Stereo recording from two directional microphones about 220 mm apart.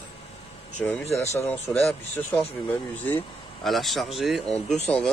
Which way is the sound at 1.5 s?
10° left (ahead or behind).